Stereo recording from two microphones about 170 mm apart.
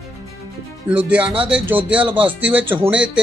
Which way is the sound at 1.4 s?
5° right (ahead or behind).